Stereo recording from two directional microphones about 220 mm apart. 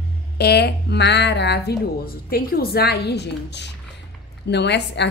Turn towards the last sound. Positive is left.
turn(degrees=50)  # may be behind; listen again after turning